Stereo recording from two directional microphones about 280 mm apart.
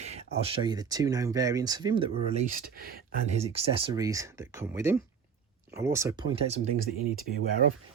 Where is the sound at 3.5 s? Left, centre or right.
Centre.